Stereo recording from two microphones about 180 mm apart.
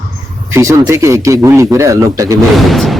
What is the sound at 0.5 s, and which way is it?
A man's voice, 15° right (ahead or behind).